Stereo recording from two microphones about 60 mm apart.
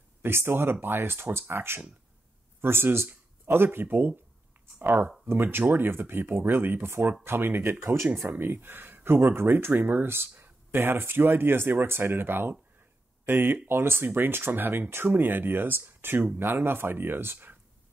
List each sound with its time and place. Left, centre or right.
0.2 s speech: right
7.8 s speech: right